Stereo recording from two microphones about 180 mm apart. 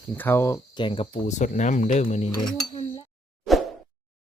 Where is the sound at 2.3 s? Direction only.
20° left (ahead or behind).